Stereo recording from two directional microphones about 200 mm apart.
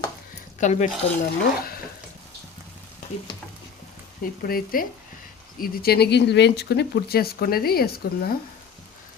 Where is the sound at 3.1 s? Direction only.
35° left (ahead or behind).